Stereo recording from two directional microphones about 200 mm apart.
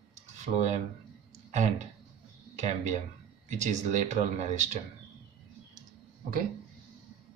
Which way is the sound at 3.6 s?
35° right (ahead or behind).